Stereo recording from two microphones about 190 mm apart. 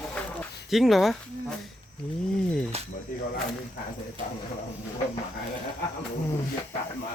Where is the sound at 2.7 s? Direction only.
35° right (ahead or behind).